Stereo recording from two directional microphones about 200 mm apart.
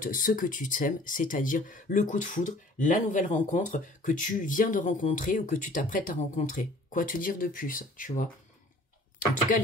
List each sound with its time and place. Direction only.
0.0 s speech: 40° left (ahead or behind)